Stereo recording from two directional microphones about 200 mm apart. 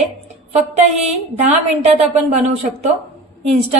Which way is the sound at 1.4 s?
35° right (ahead or behind).